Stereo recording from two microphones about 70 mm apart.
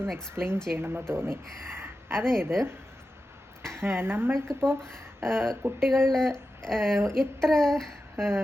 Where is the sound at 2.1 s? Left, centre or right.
Centre.